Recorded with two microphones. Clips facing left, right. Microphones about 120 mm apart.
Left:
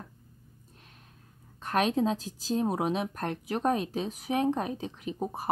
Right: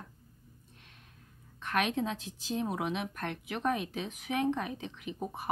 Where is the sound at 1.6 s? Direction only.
35° left (ahead or behind).